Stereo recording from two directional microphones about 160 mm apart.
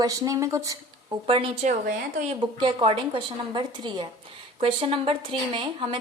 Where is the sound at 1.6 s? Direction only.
50° right (ahead or behind).